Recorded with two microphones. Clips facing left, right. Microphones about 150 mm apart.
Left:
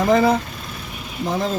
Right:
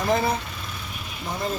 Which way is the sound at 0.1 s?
90° left.